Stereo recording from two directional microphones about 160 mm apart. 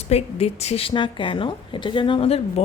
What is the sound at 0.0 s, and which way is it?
A woman's voice, 40° left (ahead or behind).